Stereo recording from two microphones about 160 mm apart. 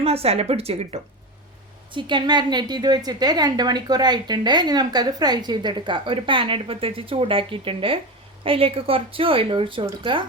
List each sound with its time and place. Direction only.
0.0 s a woman's voice: 40° right (ahead or behind)